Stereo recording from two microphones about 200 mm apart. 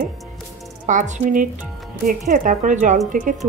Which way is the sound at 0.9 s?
40° right (ahead or behind).